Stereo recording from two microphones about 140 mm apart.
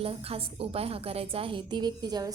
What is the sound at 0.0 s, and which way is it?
A woman's voice, 45° right (ahead or behind).